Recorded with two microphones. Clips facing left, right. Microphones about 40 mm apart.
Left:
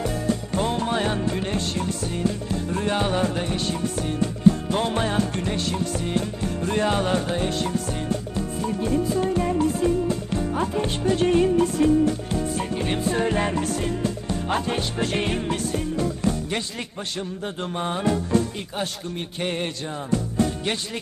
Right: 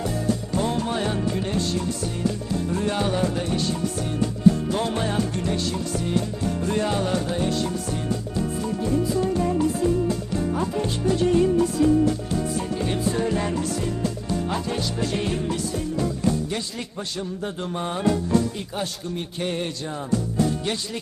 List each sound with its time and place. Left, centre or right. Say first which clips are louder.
0.5 s music: left 2 dB; left
9.2 s music: even; left
17.4 s mantra: left 1 dB; left
19.4 s music: left 1 dB; left